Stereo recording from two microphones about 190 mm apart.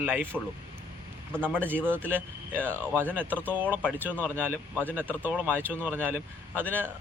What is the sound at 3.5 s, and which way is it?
A man's voice, 10° right (ahead or behind).